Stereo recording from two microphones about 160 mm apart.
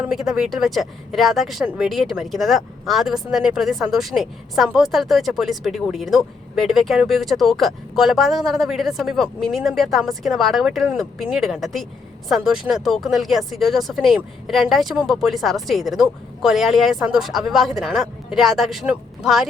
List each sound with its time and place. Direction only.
0.0 s speech: 5° right (ahead or behind)